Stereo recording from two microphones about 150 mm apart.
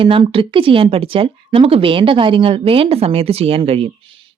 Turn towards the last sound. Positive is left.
turn(degrees=-40)  # may be behind; listen again after turning